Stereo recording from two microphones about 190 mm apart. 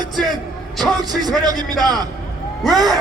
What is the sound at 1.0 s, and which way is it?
Speech, 20° right (ahead or behind).